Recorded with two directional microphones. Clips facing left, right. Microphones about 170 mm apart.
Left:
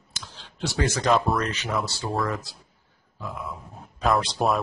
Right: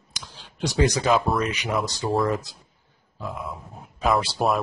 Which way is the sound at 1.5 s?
10° right (ahead or behind).